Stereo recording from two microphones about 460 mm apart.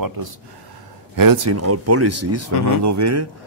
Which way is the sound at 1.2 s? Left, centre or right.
Right.